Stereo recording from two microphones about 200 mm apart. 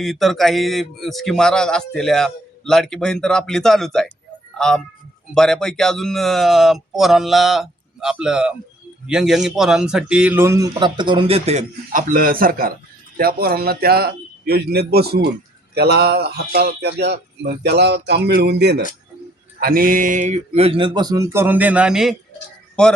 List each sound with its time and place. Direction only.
0.0 s a man's voice: centre (ahead or behind)